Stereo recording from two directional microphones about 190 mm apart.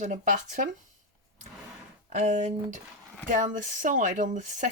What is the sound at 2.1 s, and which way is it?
Speech, 40° right (ahead or behind).